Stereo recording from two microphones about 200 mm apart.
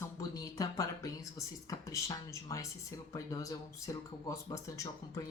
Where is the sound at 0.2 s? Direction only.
15° left (ahead or behind).